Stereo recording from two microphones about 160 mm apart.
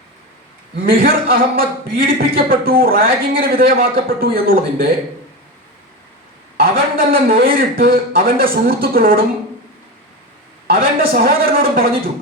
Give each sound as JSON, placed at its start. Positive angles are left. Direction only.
{"t": 0.9, "sound": "a man's voice", "side_deg": -65}
{"t": 6.6, "sound": "a man's voice", "side_deg": -65}
{"t": 11.0, "sound": "speech", "side_deg": -70}